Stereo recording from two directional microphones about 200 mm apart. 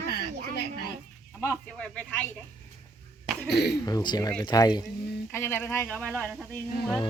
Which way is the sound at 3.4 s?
55° left (ahead or behind).